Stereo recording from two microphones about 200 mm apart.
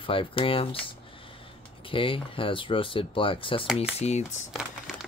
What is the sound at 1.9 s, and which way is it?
Speech, 25° left (ahead or behind).